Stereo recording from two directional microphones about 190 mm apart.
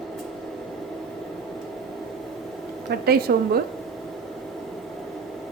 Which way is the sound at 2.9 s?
55° right (ahead or behind).